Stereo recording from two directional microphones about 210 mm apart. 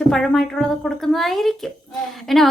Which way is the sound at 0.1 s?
Centre (ahead or behind).